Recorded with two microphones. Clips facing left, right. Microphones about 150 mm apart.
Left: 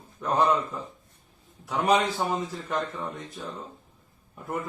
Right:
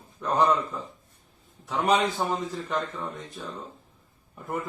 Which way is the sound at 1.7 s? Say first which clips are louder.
Even; 5° left (ahead or behind).